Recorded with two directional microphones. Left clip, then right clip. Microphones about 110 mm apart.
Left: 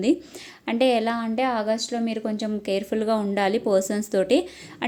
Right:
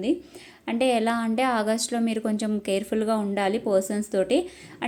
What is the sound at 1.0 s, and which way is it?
A woman's voice, centre (ahead or behind).